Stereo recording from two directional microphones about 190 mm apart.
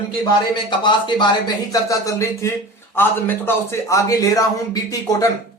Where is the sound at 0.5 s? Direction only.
25° left (ahead or behind).